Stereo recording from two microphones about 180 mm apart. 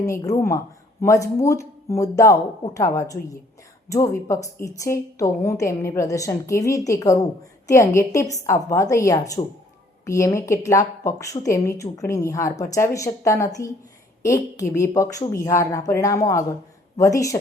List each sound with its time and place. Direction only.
0.0 s a woman's voice: 20° left (ahead or behind)